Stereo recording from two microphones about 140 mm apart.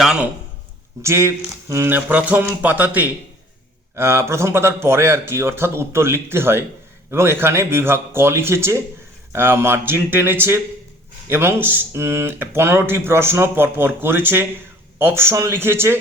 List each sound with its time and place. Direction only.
0.0 s a man's voice: 5° right (ahead or behind)
1.0 s speech: 20° right (ahead or behind)